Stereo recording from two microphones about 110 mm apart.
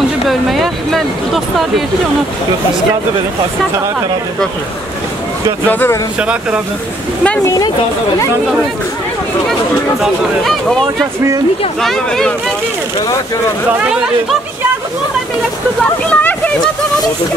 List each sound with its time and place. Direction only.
0.3 s a sound: centre (ahead or behind)
5.7 s speech: 15° left (ahead or behind)
6.1 s speech: 10° right (ahead or behind)
7.4 s a woman's voice: 35° left (ahead or behind)
9.5 s speech: centre (ahead or behind)
16.1 s a sound: 15° left (ahead or behind)